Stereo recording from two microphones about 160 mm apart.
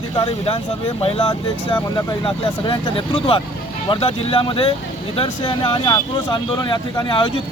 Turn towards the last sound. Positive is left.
turn(degrees=30)  # may be behind; listen again after turning